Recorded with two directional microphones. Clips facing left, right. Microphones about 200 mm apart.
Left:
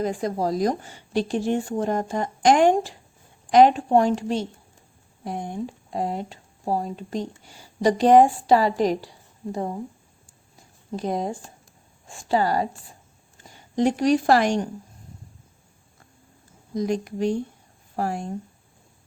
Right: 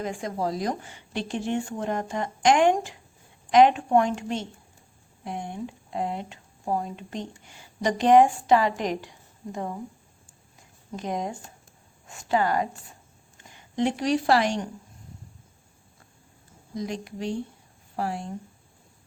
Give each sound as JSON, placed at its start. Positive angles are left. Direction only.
{"t": 0.0, "sound": "a woman's voice", "side_deg": 35}
{"t": 10.9, "sound": "a woman's voice", "side_deg": 35}
{"t": 16.7, "sound": "a woman's voice", "side_deg": 45}